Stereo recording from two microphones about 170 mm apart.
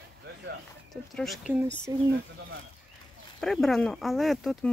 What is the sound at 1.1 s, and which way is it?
Speech, centre (ahead or behind).